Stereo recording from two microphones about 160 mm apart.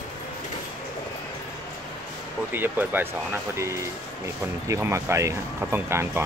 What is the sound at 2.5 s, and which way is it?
Speech, 10° right (ahead or behind).